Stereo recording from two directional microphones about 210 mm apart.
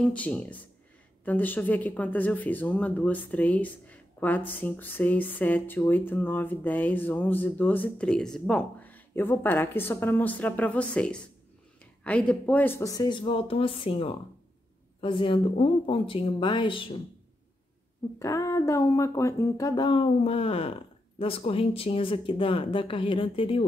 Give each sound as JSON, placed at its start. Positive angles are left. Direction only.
{"t": 0.0, "sound": "speech", "side_deg": 5}
{"t": 18.2, "sound": "speech", "side_deg": 15}